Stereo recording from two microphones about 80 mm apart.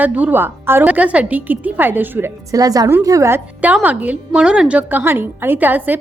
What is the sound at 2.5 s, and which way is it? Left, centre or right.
Speech, right.